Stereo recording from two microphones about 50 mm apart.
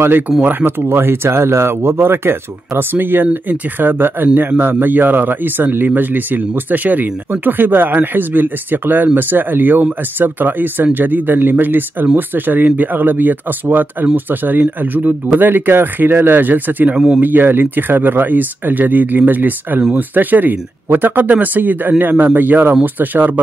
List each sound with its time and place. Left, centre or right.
0.5 s speech: right
0.8 s speech: right
1.8 s speech: right